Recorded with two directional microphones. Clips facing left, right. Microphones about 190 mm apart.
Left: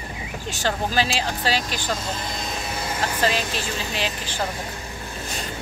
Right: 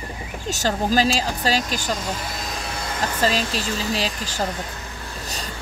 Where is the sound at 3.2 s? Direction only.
35° right (ahead or behind).